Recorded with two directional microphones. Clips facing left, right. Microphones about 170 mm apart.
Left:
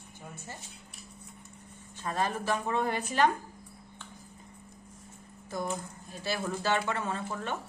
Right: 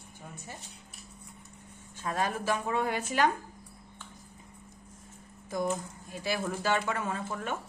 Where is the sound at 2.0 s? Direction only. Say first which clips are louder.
Even; 10° right (ahead or behind).